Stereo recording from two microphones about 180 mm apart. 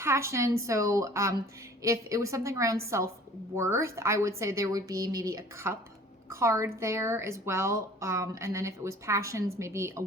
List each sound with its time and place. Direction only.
0.0 s speech: 15° right (ahead or behind)